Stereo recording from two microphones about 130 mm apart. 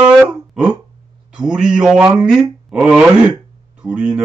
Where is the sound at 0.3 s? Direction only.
10° right (ahead or behind).